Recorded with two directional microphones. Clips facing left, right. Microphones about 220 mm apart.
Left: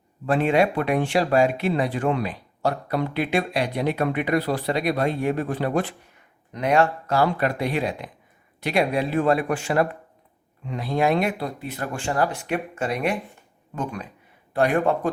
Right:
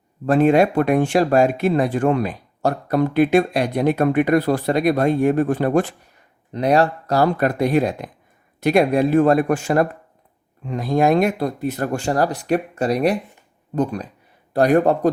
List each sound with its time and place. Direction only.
0.3 s speech: 45° right (ahead or behind)
6.5 s speech: 35° right (ahead or behind)